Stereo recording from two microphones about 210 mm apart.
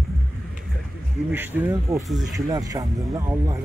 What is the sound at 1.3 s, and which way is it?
Speech, 10° right (ahead or behind).